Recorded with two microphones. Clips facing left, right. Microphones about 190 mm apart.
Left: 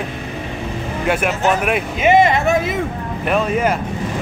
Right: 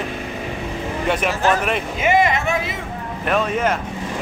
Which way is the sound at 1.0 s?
5° left (ahead or behind).